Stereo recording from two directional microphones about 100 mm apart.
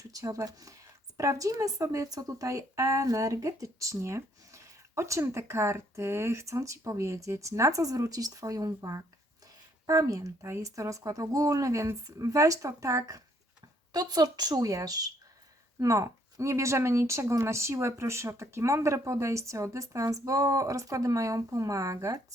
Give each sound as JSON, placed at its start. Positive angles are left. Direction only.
{"t": 0.1, "sound": "a woman's voice", "side_deg": -35}